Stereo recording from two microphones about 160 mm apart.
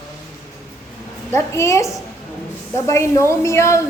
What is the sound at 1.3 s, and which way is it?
A woman's voice, 20° left (ahead or behind).